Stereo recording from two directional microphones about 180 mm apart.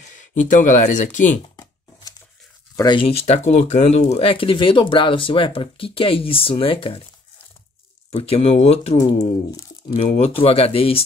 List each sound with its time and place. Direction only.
0.5 s speech: 45° left (ahead or behind)
2.7 s speech: 25° left (ahead or behind)
8.1 s speech: 35° left (ahead or behind)
9.5 s speech: 20° left (ahead or behind)
9.9 s speech: 35° left (ahead or behind)